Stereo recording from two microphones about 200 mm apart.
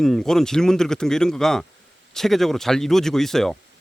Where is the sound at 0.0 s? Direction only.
Centre (ahead or behind).